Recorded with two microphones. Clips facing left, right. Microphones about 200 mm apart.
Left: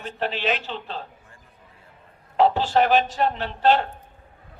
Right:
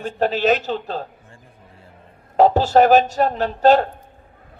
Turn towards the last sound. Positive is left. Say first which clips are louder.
# right 6 dB
turn(degrees=-40)  # may be behind; listen again after turning